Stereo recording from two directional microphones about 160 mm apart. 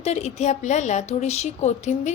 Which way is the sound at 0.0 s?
45° left (ahead or behind).